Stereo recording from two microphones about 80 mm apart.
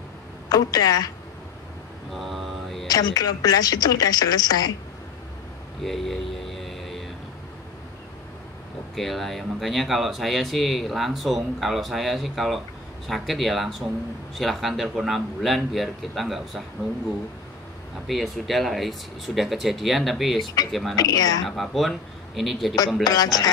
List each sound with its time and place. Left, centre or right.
0.5 s a woman's voice: left
2.1 s mantra: centre
2.9 s a woman's voice: left
5.9 s a sound: centre
8.9 s speech: centre
18.0 s speech: centre
20.9 s a woman's voice: left
21.5 s speech: centre
23.0 s a man's voice: left